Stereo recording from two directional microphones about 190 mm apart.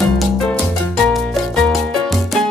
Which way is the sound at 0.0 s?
5° left (ahead or behind).